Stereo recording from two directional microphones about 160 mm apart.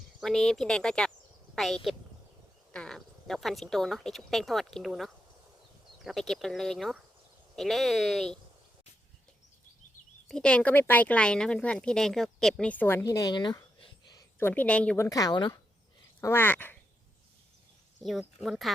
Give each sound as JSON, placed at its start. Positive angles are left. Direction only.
{"t": 0.2, "sound": "speech", "side_deg": 0}
{"t": 10.2, "sound": "speech", "side_deg": 5}
{"t": 14.3, "sound": "speech", "side_deg": 10}
{"t": 16.2, "sound": "speech", "side_deg": 15}
{"t": 18.0, "sound": "speech", "side_deg": 0}